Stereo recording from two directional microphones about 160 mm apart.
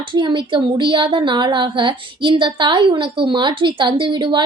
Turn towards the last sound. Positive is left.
turn(degrees=-30)  # may be behind; listen again after turning